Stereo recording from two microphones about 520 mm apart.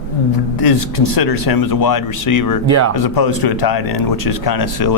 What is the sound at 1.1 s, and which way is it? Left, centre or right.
Speech, left.